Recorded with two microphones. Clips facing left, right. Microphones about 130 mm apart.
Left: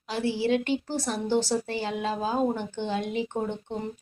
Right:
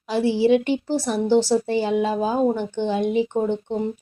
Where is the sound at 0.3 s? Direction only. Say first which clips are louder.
Right 7 dB; 20° right (ahead or behind).